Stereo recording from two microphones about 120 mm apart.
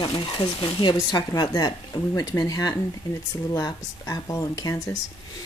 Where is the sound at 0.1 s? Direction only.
45° left (ahead or behind); by 4.9 s 30° left (ahead or behind).